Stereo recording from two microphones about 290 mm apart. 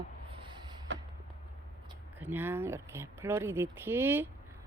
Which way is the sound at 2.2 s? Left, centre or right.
Centre.